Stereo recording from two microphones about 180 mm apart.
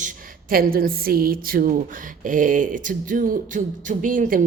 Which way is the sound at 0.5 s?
55° right (ahead or behind).